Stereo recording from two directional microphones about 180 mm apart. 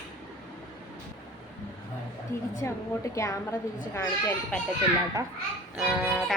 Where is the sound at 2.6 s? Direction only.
15° left (ahead or behind).